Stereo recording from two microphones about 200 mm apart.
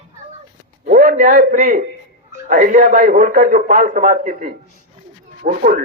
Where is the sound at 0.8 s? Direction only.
40° right (ahead or behind).